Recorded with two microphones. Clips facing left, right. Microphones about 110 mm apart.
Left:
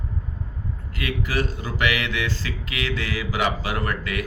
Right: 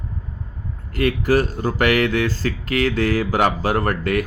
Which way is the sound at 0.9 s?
45° right (ahead or behind).